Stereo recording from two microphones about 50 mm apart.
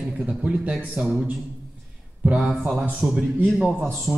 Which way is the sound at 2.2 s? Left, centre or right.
Right.